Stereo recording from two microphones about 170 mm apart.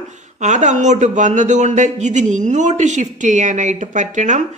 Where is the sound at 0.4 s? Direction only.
45° right (ahead or behind).